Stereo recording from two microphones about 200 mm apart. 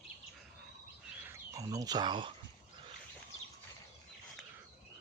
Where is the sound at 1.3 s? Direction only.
15° right (ahead or behind).